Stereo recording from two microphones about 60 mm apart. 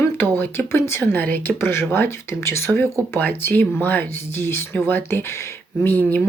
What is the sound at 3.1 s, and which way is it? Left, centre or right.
Speech, left.